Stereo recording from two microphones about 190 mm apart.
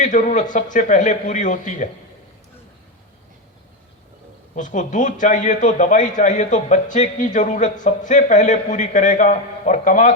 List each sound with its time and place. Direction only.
0.0 s a man's voice: 40° left (ahead or behind)
4.5 s a man's voice: 40° left (ahead or behind)